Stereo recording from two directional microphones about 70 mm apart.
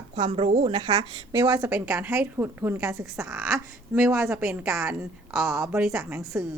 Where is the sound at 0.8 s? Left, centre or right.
Right.